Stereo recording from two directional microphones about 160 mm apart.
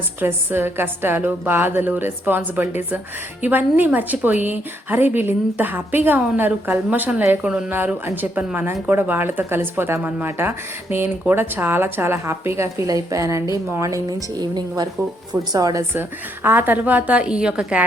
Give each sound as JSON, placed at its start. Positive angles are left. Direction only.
{"t": 0.2, "sound": "a woman's voice", "side_deg": -15}